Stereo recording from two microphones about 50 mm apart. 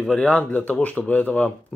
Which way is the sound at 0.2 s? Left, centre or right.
Left.